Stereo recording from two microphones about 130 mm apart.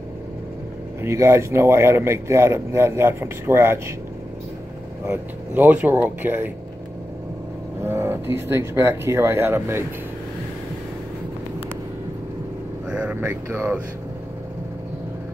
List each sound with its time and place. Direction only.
1.0 s speech: 20° right (ahead or behind)
5.0 s speech: 15° right (ahead or behind)
7.8 s speech: 20° right (ahead or behind)
12.9 s speech: 10° right (ahead or behind)